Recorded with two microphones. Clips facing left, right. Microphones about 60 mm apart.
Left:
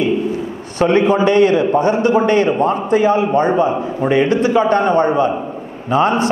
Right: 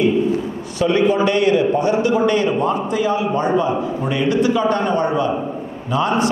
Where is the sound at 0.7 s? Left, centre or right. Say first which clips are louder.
Left 3 dB; left.